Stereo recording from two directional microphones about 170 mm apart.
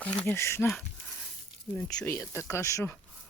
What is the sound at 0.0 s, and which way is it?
Speech, 5° left (ahead or behind).